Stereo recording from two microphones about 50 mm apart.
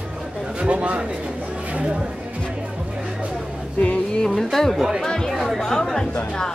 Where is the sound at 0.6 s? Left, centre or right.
Right.